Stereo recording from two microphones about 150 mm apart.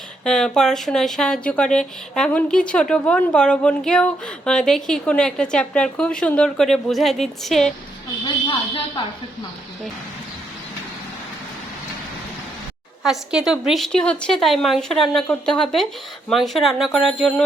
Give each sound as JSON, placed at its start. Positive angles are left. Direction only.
{"t": 0.3, "sound": "speech", "side_deg": 5}
{"t": 8.2, "sound": "speech", "side_deg": 35}
{"t": 13.1, "sound": "speech", "side_deg": -5}